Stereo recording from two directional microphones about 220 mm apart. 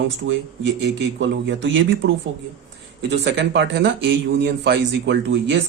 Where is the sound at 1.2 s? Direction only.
55° right (ahead or behind).